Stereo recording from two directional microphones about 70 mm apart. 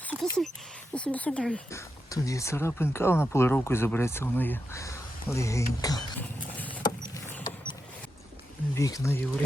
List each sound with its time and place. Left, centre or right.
0.2 s speech: centre
0.9 s speech: centre
1.7 s speech: left
4.7 s speech: left
6.1 s a sound: left
8.7 s speech: left